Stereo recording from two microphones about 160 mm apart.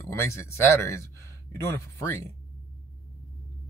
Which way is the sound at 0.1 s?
15° left (ahead or behind).